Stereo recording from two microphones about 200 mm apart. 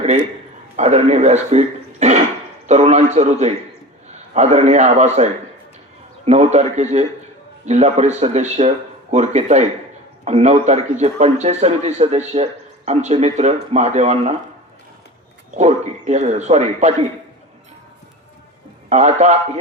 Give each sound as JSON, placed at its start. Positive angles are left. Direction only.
{"t": 0.8, "sound": "a man's voice", "side_deg": -35}
{"t": 15.5, "sound": "a man's voice", "side_deg": -35}
{"t": 18.9, "sound": "a man's voice", "side_deg": -35}